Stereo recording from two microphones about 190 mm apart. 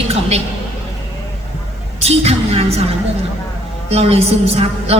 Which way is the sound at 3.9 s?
30° right (ahead or behind).